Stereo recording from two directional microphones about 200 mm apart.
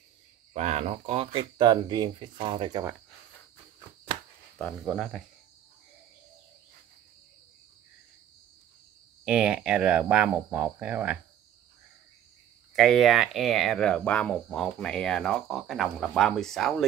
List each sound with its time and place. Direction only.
0.5 s speech: 35° right (ahead or behind)
4.6 s speech: centre (ahead or behind)
9.2 s speech: 5° right (ahead or behind)
12.7 s speech: centre (ahead or behind)